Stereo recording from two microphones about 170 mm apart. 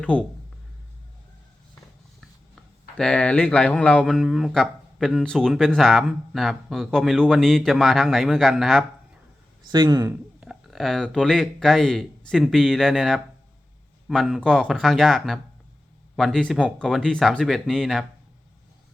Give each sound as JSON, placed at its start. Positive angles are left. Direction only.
{"t": 0.0, "sound": "speech", "side_deg": 5}
{"t": 3.0, "sound": "speech", "side_deg": 5}
{"t": 9.7, "sound": "speech", "side_deg": -25}
{"t": 10.4, "sound": "speech", "side_deg": 0}